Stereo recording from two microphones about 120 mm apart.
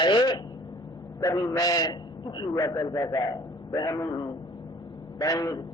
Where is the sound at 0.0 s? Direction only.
40° left (ahead or behind).